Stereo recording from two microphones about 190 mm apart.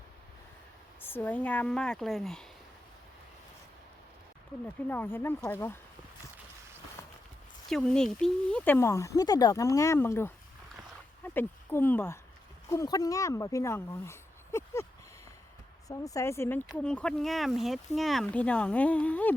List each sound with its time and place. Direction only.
1.0 s speech: 10° left (ahead or behind)
4.6 s speech: 10° left (ahead or behind)
7.7 s speech: 5° left (ahead or behind)
15.9 s speech: 15° left (ahead or behind)